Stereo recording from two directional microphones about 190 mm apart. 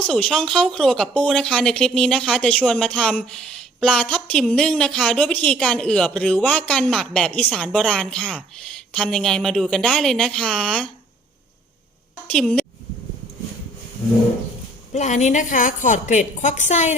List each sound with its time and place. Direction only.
0.1 s speech: 5° left (ahead or behind)
12.3 s speech: 5° left (ahead or behind)
14.9 s a woman's voice: 40° left (ahead or behind)